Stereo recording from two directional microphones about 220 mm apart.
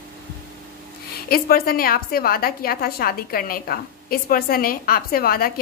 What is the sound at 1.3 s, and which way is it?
A woman's voice, 45° left (ahead or behind).